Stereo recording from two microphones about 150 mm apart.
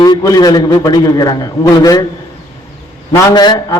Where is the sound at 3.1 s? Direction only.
30° left (ahead or behind).